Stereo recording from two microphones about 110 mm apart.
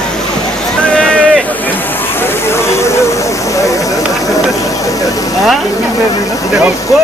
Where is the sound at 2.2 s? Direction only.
25° left (ahead or behind).